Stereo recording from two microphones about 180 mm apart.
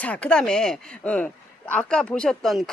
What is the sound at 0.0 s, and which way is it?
Speech, 5° left (ahead or behind).